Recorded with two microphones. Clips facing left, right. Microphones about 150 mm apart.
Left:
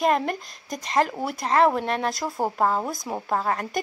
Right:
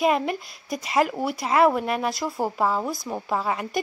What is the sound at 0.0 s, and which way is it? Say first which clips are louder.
Speech: even; 5° right (ahead or behind).